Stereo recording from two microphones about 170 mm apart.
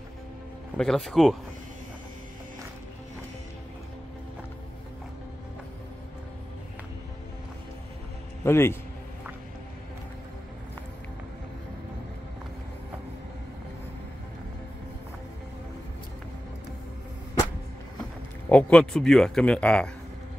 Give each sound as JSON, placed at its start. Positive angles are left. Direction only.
{"t": 0.7, "sound": "speech", "side_deg": 5}
{"t": 8.5, "sound": "a man's voice", "side_deg": 15}
{"t": 18.5, "sound": "speech", "side_deg": 5}